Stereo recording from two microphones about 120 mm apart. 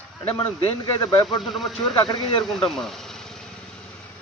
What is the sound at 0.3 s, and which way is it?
Speech, 50° left (ahead or behind).